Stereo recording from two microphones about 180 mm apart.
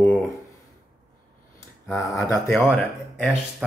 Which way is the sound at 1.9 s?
15° left (ahead or behind).